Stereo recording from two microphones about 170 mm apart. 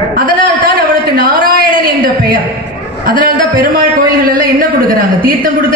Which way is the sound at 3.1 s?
60° right (ahead or behind).